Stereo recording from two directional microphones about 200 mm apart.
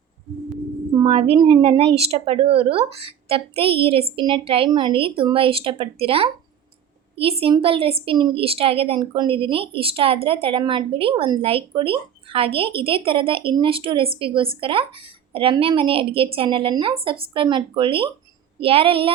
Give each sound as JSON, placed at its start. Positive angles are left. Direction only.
{"t": 0.9, "sound": "speech", "side_deg": -30}